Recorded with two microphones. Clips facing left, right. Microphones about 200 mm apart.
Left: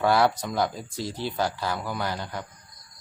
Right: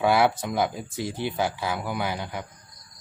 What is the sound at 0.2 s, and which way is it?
Speech, 5° right (ahead or behind).